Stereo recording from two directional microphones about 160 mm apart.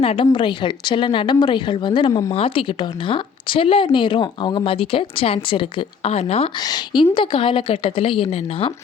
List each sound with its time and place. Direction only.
0.0 s speech: 35° left (ahead or behind)
6.6 s speech: 25° left (ahead or behind)